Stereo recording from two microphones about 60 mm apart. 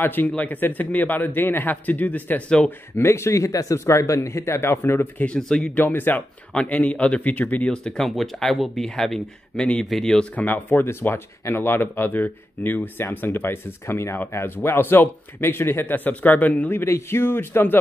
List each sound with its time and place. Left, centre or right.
0.0 s speech: left
3.0 s speech: left
5.2 s speech: centre
5.8 s speech: left
7.7 s speech: centre
10.3 s speech: left
16.8 s speech: left